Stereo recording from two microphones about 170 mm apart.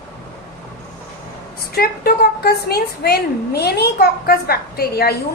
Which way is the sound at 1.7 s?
65° left (ahead or behind).